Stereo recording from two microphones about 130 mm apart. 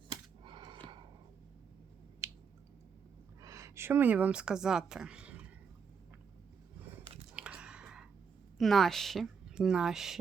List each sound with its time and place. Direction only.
0.1 s a sound: 35° right (ahead or behind)
2.2 s squish: 20° right (ahead or behind)
3.4 s a woman's voice: 25° right (ahead or behind)
7.3 s whispering: 10° right (ahead or behind)
8.5 s speech: centre (ahead or behind)